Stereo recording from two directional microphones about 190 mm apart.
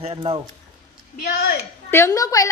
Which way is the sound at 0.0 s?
30° right (ahead or behind).